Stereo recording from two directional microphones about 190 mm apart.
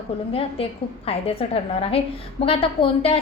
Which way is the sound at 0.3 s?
30° left (ahead or behind).